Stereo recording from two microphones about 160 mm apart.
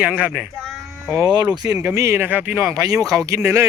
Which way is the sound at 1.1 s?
25° right (ahead or behind).